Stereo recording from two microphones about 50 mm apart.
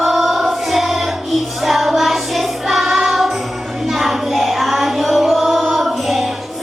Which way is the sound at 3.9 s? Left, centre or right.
Centre.